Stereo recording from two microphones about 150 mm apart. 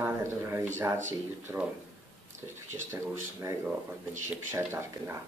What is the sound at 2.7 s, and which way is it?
Speech, 20° right (ahead or behind).